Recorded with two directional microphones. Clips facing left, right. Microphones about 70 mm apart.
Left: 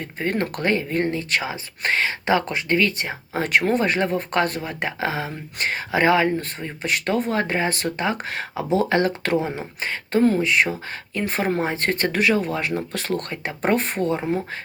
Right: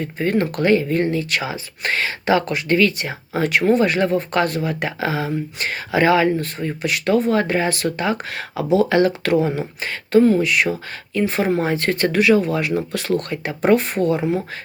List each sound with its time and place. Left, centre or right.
0.2 s speech: left